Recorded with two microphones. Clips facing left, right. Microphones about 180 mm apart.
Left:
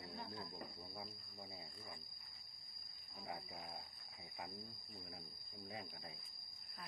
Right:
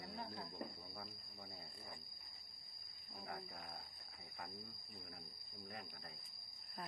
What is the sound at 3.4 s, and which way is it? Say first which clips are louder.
Speech: left 1 dB; centre (ahead or behind).